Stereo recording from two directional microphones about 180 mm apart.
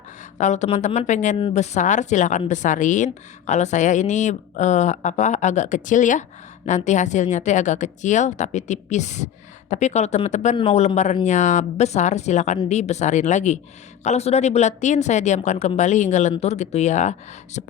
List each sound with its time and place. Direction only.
0.3 s a woman's voice: 40° left (ahead or behind)